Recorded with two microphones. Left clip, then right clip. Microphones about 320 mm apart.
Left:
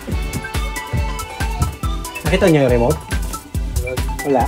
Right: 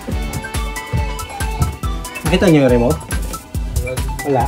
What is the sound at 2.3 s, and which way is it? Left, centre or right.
Speech, left.